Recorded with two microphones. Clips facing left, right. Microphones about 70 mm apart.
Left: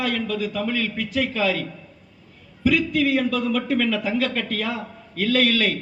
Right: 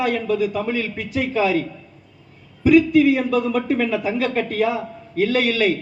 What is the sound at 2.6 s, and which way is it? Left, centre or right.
Speech, right.